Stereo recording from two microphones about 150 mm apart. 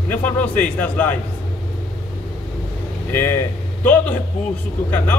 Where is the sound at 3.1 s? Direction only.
15° left (ahead or behind).